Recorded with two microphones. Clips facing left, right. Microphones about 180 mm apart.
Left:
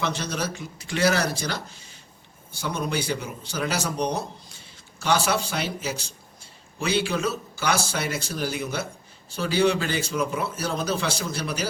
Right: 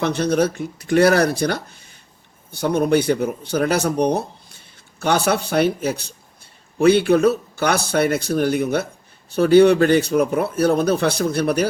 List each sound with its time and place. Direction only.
0.0 s speech: 60° right (ahead or behind)